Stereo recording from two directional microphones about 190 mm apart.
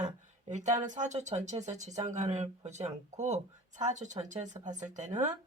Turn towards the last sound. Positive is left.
turn(degrees=-40)  # may be behind; listen again after turning